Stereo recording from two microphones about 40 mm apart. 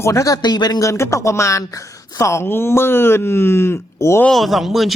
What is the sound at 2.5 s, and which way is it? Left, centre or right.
Speech, left.